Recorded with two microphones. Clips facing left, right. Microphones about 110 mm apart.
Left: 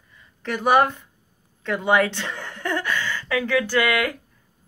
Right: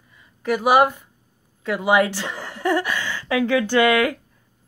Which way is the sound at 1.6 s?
5° right (ahead or behind).